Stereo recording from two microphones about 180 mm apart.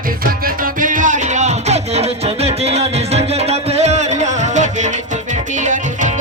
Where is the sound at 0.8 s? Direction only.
50° right (ahead or behind).